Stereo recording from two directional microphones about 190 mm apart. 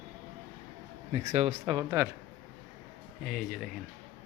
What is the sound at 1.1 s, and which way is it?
Speech, 35° right (ahead or behind).